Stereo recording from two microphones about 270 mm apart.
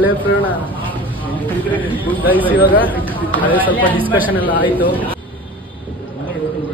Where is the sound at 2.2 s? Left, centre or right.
Centre.